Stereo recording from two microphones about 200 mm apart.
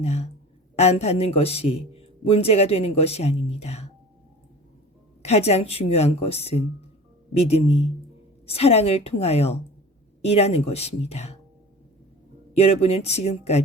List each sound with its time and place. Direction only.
0.0 s a man's voice: 30° left (ahead or behind)
5.2 s a man's voice: 30° left (ahead or behind)
12.5 s a man's voice: 30° left (ahead or behind)